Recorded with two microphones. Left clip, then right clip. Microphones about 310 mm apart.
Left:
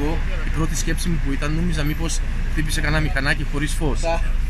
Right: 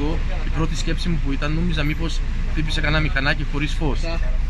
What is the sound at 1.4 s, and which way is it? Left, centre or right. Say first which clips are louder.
Speech: right 3 dB; centre.